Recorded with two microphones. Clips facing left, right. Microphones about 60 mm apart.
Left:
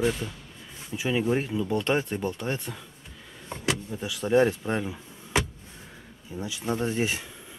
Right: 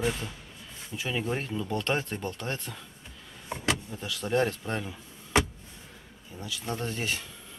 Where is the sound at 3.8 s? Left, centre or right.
Centre.